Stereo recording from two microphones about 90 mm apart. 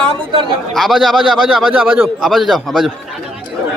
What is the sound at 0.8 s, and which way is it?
A man's voice, 5° right (ahead or behind).